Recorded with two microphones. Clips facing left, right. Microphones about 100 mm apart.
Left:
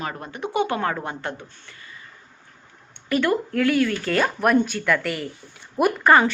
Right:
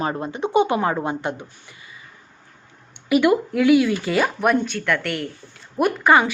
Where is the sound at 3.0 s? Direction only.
10° right (ahead or behind).